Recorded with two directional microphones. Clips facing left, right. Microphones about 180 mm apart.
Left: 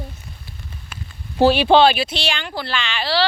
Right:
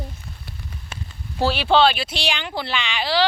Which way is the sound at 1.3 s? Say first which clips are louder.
Left 6 dB; 15° left (ahead or behind).